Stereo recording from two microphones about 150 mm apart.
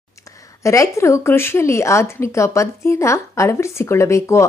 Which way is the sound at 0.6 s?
20° left (ahead or behind).